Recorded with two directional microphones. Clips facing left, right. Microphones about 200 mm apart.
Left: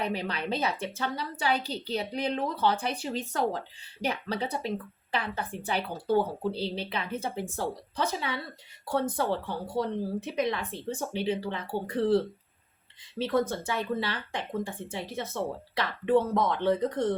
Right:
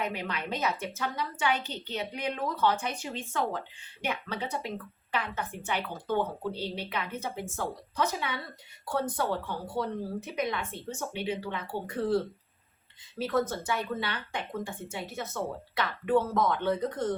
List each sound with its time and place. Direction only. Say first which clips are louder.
0.0 s a woman's voice: left 2 dB; 35° left (ahead or behind)